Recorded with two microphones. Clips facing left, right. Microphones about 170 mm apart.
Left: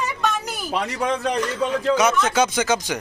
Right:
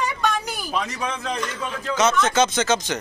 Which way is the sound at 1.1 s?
35° left (ahead or behind).